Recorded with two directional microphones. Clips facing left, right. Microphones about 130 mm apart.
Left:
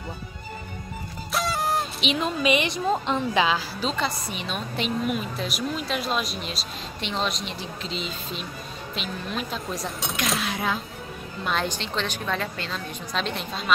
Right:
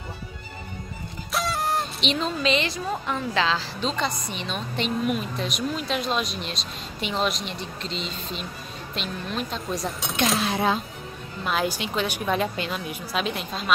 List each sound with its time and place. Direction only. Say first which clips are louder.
1.3 s a woman's voice: even; centre (ahead or behind)
10.4 s speech: right 4 dB; 30° right (ahead or behind)
11.4 s a woman's voice: right 2 dB; 5° right (ahead or behind)